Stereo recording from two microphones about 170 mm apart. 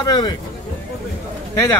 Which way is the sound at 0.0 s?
25° left (ahead or behind).